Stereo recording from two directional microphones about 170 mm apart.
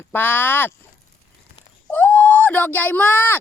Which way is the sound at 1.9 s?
10° left (ahead or behind).